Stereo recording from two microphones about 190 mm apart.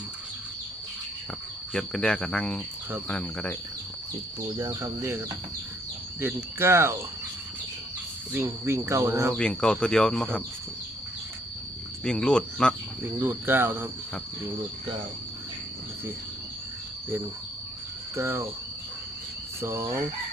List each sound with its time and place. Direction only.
1.7 s speech: 5° left (ahead or behind)
4.4 s speech: 20° right (ahead or behind)
8.3 s speech: 10° right (ahead or behind)
9.3 s speech: 5° left (ahead or behind)
12.0 s speech: 5° left (ahead or behind)
13.1 s speech: 10° right (ahead or behind)
18.2 s speech: 15° right (ahead or behind)
19.6 s speech: 15° right (ahead or behind)